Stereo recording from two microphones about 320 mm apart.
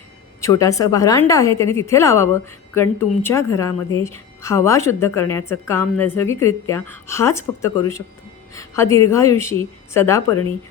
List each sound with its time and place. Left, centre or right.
0.4 s a woman's voice: centre